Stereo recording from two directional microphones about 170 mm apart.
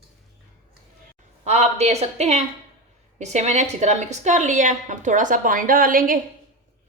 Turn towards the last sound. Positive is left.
turn(degrees=-55)  # may be behind; listen again after turning